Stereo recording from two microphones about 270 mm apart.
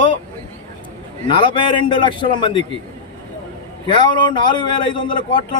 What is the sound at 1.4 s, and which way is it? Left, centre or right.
Speech, centre.